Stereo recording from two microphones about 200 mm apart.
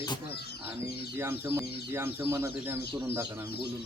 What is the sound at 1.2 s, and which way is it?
Speech, 10° right (ahead or behind).